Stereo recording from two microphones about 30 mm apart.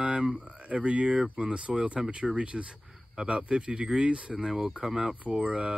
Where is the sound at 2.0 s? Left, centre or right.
Centre.